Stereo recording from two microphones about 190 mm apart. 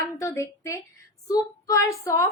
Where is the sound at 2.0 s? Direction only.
15° left (ahead or behind).